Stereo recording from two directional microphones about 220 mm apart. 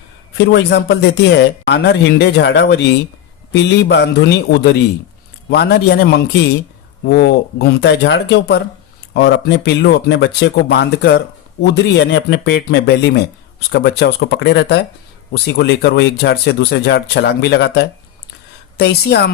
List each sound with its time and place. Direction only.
0.3 s speech: 50° left (ahead or behind)